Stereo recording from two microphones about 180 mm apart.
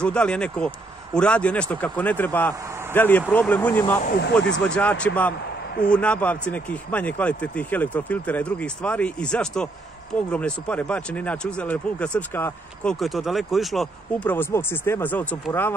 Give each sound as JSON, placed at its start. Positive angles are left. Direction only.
{"t": 0.0, "sound": "speech", "side_deg": 5}
{"t": 4.2, "sound": "speech", "side_deg": 70}
{"t": 4.5, "sound": "speech", "side_deg": 5}
{"t": 13.0, "sound": "speech", "side_deg": 0}
{"t": 14.3, "sound": "speech", "side_deg": 10}